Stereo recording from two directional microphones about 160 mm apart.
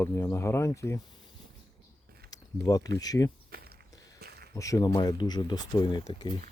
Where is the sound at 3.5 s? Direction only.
70° right (ahead or behind).